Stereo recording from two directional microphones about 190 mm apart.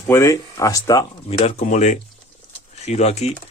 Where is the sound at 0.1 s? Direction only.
15° left (ahead or behind).